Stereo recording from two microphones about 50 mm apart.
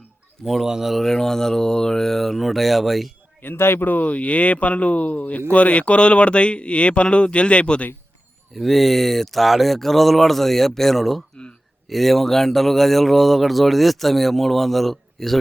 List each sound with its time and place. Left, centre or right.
0.4 s speech: centre
3.4 s speech: left
3.8 s speech: left
8.5 s speech: centre